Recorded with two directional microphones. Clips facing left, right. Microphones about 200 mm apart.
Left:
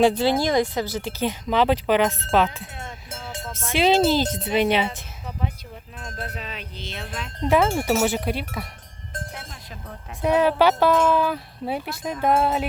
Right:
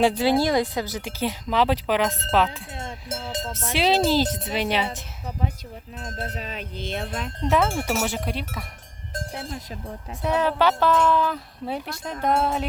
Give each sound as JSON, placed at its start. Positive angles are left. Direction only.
{"t": 0.0, "sound": "speech", "side_deg": -10}
{"t": 0.3, "sound": "speech", "side_deg": 15}
{"t": 0.6, "sound": "speech", "side_deg": -15}
{"t": 3.4, "sound": "music", "side_deg": -20}
{"t": 3.8, "sound": "speech", "side_deg": -5}
{"t": 6.2, "sound": "speech", "side_deg": -40}
{"t": 7.4, "sound": "speech", "side_deg": 5}
{"t": 9.3, "sound": "speech", "side_deg": -30}
{"t": 10.2, "sound": "speech", "side_deg": 10}